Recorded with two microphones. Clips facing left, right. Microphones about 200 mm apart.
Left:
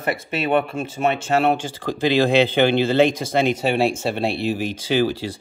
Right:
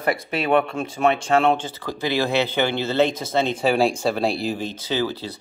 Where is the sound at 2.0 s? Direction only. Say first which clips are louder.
Left 5 dB; 15° left (ahead or behind).